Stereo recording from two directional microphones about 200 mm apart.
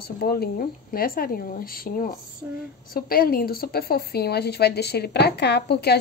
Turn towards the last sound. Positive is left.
turn(degrees=55)  # may be behind; listen again after turning